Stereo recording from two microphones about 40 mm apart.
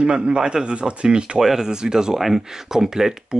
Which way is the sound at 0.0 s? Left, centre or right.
Right.